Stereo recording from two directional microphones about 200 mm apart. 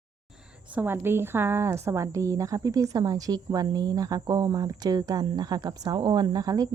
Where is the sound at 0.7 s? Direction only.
10° right (ahead or behind).